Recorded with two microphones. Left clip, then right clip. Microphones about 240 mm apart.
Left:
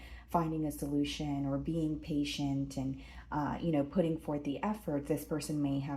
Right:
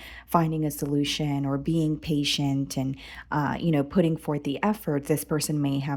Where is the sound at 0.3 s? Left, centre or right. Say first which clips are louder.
Right 8 dB; right.